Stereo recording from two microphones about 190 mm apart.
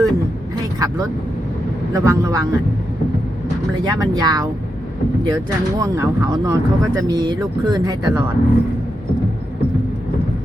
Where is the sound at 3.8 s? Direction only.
20° right (ahead or behind).